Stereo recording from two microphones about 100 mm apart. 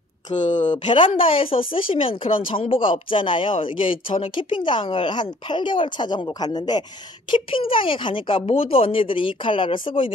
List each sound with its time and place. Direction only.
0.3 s speech: 90° left
0.8 s speech: 60° left (ahead or behind); by 6.8 s 45° left (ahead or behind)
7.2 s speech: 60° left (ahead or behind)